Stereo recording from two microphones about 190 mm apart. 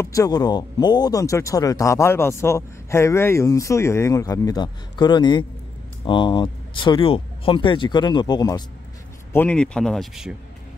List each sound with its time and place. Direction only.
0.0 s speech: 15° left (ahead or behind)
9.3 s speech: 10° left (ahead or behind)